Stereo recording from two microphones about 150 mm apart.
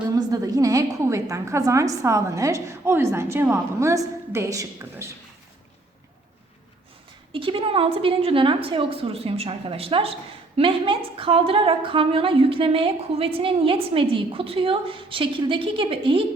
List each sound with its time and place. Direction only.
0.2 s a woman's voice: 25° right (ahead or behind)
7.3 s a woman's voice: 35° right (ahead or behind)